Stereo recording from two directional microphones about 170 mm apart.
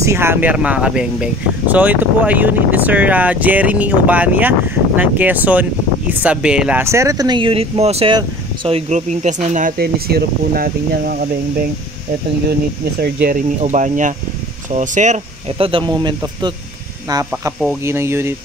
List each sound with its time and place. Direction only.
0.0 s speech: 15° right (ahead or behind); by 11.6 s 60° right (ahead or behind)
13.0 s speech: 70° right (ahead or behind)
13.6 s speech: 45° right (ahead or behind); by 18.3 s 15° right (ahead or behind)